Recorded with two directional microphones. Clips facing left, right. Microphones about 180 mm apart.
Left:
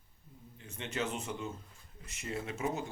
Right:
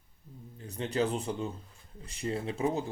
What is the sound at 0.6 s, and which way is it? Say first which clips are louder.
Speech: right 7 dB; 35° right (ahead or behind).